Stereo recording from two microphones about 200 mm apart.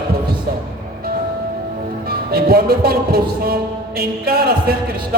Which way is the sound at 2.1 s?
50° right (ahead or behind).